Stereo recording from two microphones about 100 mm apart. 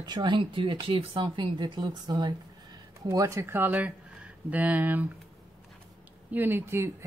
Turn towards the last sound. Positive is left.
turn(degrees=-25)  # may be behind; listen again after turning